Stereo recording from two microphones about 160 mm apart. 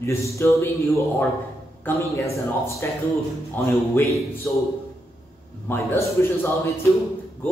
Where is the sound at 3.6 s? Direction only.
10° left (ahead or behind).